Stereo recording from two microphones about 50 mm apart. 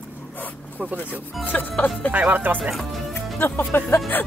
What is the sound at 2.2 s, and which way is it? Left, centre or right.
Speech, right.